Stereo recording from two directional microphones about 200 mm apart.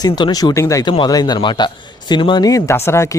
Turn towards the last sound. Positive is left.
turn(degrees=15)  # may be behind; listen again after turning